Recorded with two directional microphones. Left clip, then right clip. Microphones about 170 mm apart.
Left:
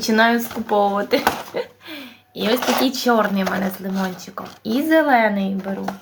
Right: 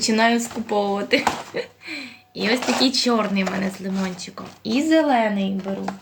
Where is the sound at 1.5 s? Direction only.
10° right (ahead or behind).